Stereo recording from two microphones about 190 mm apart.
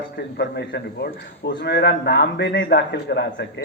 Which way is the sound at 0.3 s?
60° left (ahead or behind).